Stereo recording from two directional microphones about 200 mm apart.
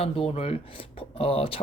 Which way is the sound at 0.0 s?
30° left (ahead or behind).